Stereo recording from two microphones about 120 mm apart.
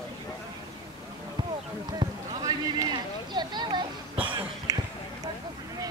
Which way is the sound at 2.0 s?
40° right (ahead or behind).